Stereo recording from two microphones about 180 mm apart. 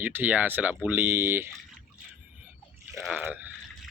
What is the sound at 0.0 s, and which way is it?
Speech, 10° right (ahead or behind).